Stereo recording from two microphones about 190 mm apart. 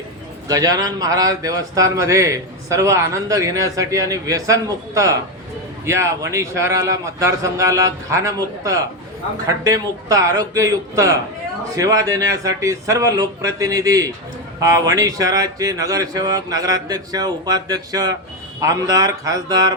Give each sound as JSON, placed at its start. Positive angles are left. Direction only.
{"t": 0.4, "sound": "a man's voice", "side_deg": -20}